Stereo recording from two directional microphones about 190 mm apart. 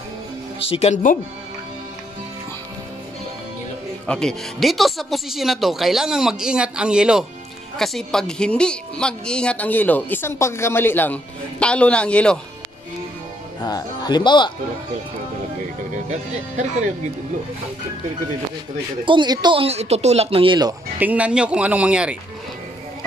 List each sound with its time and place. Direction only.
0.6 s speech: 30° left (ahead or behind)
4.0 s speech: 5° left (ahead or behind)
13.6 s speech: 20° left (ahead or behind)
16.1 s speech: 40° right (ahead or behind)
19.0 s speech: 25° right (ahead or behind)
21.0 s speech: 5° right (ahead or behind)